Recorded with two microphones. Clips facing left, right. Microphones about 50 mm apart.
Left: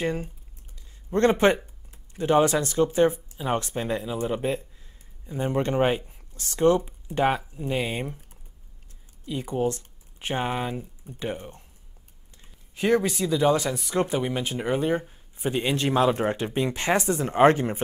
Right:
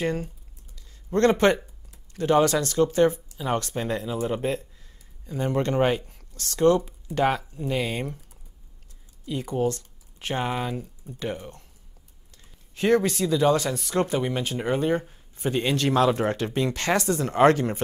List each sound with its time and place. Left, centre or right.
0.0 s speech: centre
0.7 s a sound: left
2.1 s speech: left
9.3 s speech: centre
12.7 s speech: centre